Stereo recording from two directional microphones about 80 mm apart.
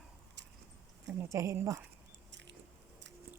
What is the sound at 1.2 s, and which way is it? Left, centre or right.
Speech, right.